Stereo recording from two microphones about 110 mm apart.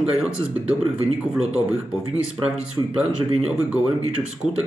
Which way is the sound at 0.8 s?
65° right (ahead or behind).